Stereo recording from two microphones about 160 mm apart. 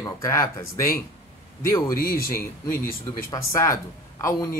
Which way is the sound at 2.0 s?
65° left (ahead or behind).